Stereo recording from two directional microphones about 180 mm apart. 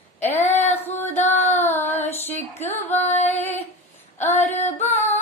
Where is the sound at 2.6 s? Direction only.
10° left (ahead or behind).